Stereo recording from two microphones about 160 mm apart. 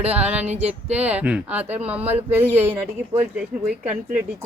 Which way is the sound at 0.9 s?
10° right (ahead or behind).